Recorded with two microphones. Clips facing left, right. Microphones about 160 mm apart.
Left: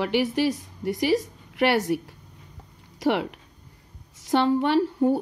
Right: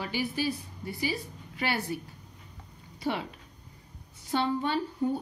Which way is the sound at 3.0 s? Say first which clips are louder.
Left 8 dB; 70° left (ahead or behind).